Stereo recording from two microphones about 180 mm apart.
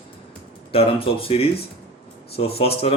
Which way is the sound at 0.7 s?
30° left (ahead or behind).